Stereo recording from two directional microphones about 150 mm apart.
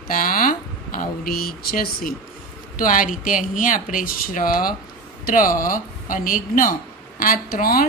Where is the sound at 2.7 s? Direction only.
65° left (ahead or behind).